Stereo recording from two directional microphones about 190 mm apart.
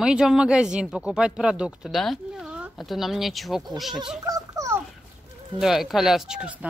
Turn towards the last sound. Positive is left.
turn(degrees=-5)  # may be behind; listen again after turning